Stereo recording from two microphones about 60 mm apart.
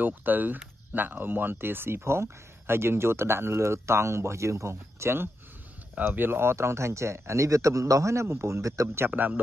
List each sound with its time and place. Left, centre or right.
0.0 s speech: right
5.9 s speech: right
8.8 s speech: right
9.1 s speech: right